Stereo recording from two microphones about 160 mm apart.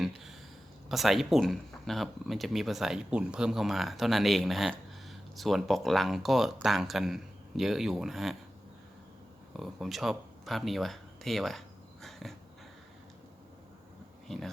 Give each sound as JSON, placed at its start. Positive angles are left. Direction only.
{"t": 0.0, "sound": "a sound", "side_deg": 0}
{"t": 0.9, "sound": "speech", "side_deg": 0}
{"t": 9.5, "sound": "speech", "side_deg": 0}
{"t": 12.2, "sound": "cat", "side_deg": 0}
{"t": 14.3, "sound": "speech", "side_deg": 0}